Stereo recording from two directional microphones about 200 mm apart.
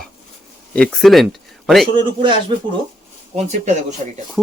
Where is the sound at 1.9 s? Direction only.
25° right (ahead or behind).